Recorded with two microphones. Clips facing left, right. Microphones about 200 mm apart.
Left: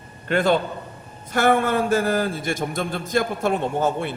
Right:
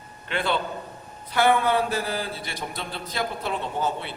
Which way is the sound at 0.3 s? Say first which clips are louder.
Left 7 dB; 45° left (ahead or behind).